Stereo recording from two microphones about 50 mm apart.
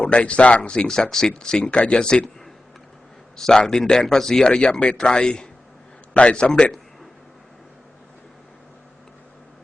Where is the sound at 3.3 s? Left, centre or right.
Centre.